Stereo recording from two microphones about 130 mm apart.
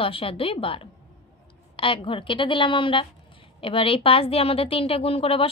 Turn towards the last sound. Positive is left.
turn(degrees=45)  # may be behind; listen again after turning